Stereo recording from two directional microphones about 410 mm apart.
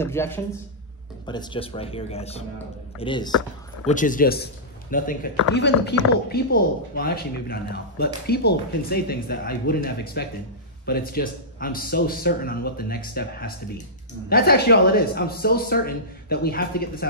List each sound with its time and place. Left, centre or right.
0.0 s a man's voice: centre; by 17.1 s left